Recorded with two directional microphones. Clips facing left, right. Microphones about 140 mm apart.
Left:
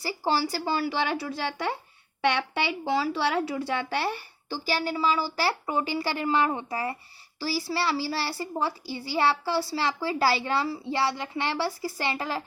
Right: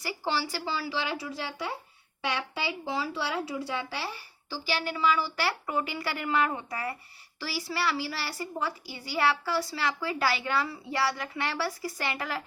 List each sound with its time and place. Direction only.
0.0 s a woman's voice: 40° left (ahead or behind)